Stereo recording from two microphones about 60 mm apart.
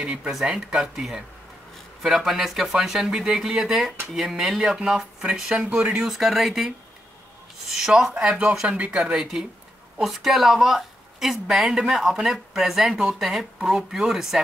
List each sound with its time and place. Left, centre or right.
0.0 s a woman's voice: centre
6.0 s speech: centre
7.7 s a woman's voice: centre
9.0 s a woman's voice: centre